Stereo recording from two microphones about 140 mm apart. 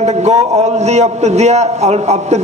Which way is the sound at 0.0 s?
50° right (ahead or behind).